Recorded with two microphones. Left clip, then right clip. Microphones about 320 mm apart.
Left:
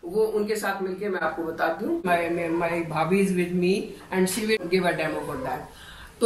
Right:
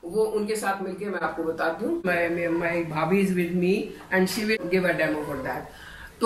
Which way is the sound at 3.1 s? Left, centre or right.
Centre.